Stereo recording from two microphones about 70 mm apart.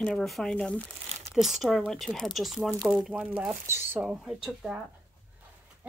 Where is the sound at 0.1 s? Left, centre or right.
Centre.